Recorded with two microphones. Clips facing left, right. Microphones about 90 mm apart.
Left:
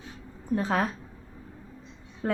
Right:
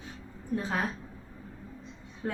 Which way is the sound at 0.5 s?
65° left (ahead or behind).